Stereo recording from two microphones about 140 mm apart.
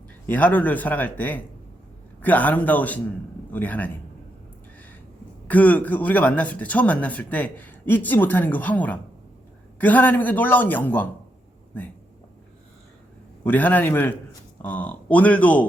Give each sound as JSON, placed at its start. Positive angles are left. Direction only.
{"t": 0.3, "sound": "speech", "side_deg": 15}
{"t": 5.5, "sound": "speech", "side_deg": 10}
{"t": 13.4, "sound": "speech", "side_deg": 10}